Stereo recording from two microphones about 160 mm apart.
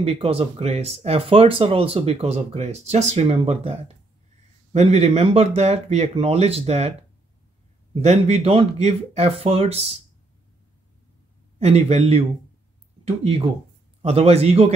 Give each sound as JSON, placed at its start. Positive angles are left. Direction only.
{"t": 0.0, "sound": "speech", "side_deg": -35}
{"t": 7.9, "sound": "speech", "side_deg": -40}
{"t": 11.6, "sound": "speech", "side_deg": -40}